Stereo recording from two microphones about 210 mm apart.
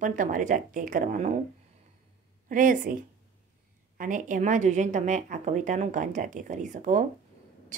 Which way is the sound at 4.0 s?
35° right (ahead or behind).